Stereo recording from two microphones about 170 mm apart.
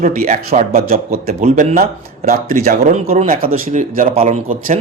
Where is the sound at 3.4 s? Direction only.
50° right (ahead or behind).